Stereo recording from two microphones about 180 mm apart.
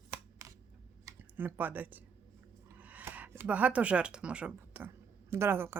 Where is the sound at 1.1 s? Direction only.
10° right (ahead or behind).